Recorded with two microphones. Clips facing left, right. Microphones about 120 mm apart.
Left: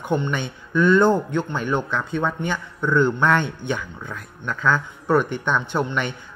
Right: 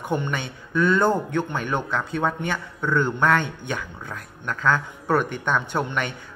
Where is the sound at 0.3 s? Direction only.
45° right (ahead or behind).